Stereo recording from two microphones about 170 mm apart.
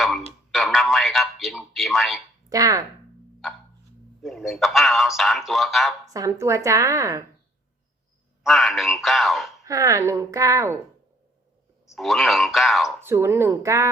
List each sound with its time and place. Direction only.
0.5 s a sound: centre (ahead or behind)
2.5 s a woman's voice: 20° right (ahead or behind)
4.2 s speech: centre (ahead or behind)
6.1 s a woman's voice: 20° right (ahead or behind)
8.4 s speech: centre (ahead or behind)
9.6 s a woman's voice: 20° right (ahead or behind)
11.9 s speech: centre (ahead or behind)
13.0 s speech: 15° right (ahead or behind)